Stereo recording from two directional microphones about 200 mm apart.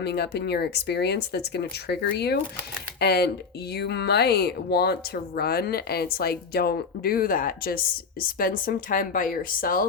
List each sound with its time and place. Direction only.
0.0 s speech: 55° left (ahead or behind)